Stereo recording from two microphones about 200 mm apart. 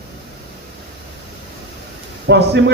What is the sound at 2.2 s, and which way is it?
Speech, 55° right (ahead or behind).